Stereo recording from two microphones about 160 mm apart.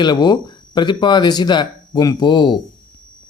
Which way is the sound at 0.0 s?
25° left (ahead or behind).